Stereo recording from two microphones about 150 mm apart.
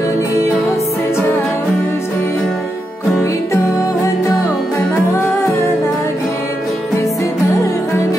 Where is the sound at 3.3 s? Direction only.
20° left (ahead or behind).